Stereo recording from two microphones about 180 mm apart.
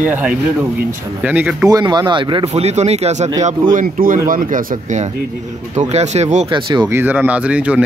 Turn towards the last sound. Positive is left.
turn(degrees=-5)  # may be behind; listen again after turning